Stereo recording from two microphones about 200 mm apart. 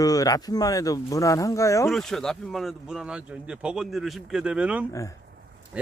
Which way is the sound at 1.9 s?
Centre (ahead or behind).